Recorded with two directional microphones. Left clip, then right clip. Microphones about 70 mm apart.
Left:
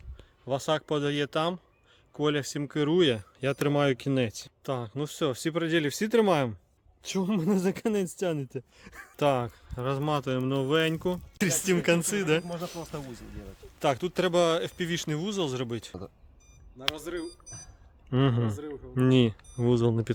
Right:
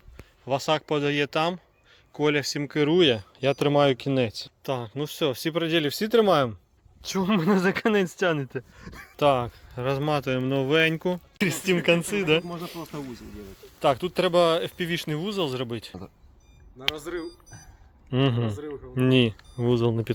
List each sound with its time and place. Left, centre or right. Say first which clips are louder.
0.4 s speech: right 4 dB; centre
2.6 s speech: right 4 dB; centre
3.7 s speech: right 5 dB; left
4.6 s speech: right 3 dB; left
7.4 s speech: right 6 dB; centre
8.4 s speech: right 4 dB; left
9.7 s speech: right 4 dB; centre
10.9 s speech: right 3 dB; centre
11.3 s speech: right 2 dB; left
12.6 s speech: right 1 dB; left
12.9 s speech: right 3 dB; left
13.7 s speech: right 4 dB; left
16.7 s speech: right 3 dB; centre
18.1 s speech: right 2 dB; left